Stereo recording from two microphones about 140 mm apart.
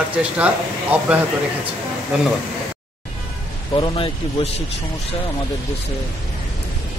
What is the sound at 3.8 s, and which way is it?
Speech, 40° left (ahead or behind).